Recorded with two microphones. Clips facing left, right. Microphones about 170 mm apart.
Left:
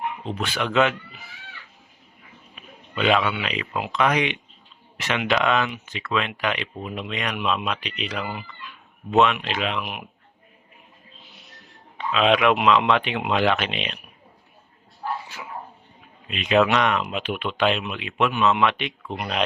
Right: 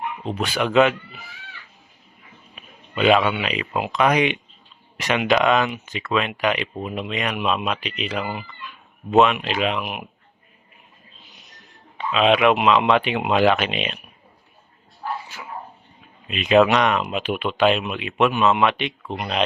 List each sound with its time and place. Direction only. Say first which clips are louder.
0.3 s speech: right 6 dB; 10° right (ahead or behind)
2.9 s a man's voice: right 4 dB; 10° right (ahead or behind)
12.1 s speech: right 2 dB; 5° right (ahead or behind)
16.5 s speech: right 3 dB; 20° right (ahead or behind)
18.3 s speech: right 1 dB; 35° right (ahead or behind)
18.7 s speech: right 3 dB; centre (ahead or behind)